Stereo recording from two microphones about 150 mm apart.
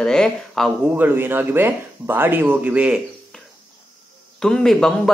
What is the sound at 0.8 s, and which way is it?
Speech, 10° right (ahead or behind).